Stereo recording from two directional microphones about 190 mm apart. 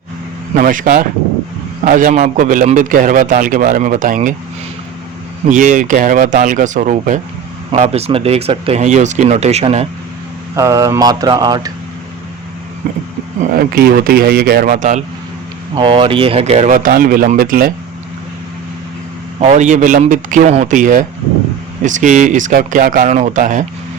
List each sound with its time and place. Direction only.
0.5 s a man's voice: 45° right (ahead or behind)
5.5 s a man's voice: 40° right (ahead or behind)
10.5 s speech: 15° right (ahead or behind)
13.5 s a man's voice: 50° right (ahead or behind)
15.7 s speech: 25° right (ahead or behind); by 17.7 s 50° right (ahead or behind)
19.4 s speech: 40° right (ahead or behind)